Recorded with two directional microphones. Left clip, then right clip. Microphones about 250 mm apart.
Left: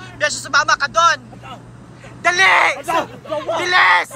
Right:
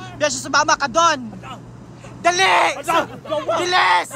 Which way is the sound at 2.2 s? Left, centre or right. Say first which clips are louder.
Left 2 dB; centre.